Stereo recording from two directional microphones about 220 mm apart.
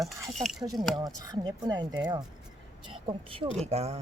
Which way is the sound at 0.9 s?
15° right (ahead or behind).